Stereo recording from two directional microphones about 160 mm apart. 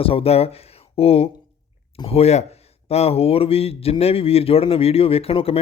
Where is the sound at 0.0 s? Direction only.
35° left (ahead or behind).